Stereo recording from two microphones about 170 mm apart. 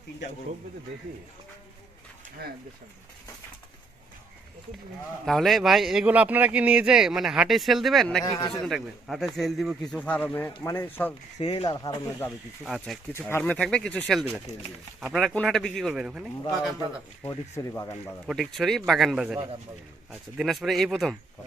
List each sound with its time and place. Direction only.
2.4 s speech: 65° right (ahead or behind)
5.2 s speech: centre (ahead or behind)
8.2 s speech: 25° left (ahead or behind)
8.6 s speech: centre (ahead or behind)
11.3 s speech: 40° left (ahead or behind)
11.6 s speech: 25° left (ahead or behind)
12.6 s speech: centre (ahead or behind)
13.1 s speech: 10° left (ahead or behind)
17.2 s speech: 20° left (ahead or behind)
18.3 s speech: centre (ahead or behind)